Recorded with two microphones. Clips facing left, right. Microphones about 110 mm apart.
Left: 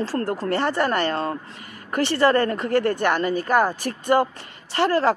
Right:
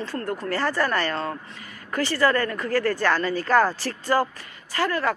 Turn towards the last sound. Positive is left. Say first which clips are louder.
# left 5 dB
turn(degrees=30)  # may be behind; listen again after turning